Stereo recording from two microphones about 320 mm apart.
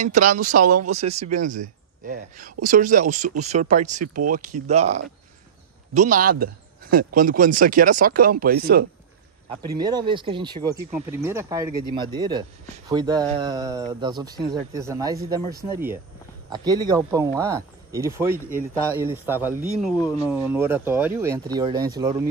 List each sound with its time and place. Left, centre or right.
0.0 s speech: right
4.0 s speech: right
4.3 s speech: right
9.7 s speech: centre
16.4 s speech: centre
20.0 s speech: centre
20.4 s speech: centre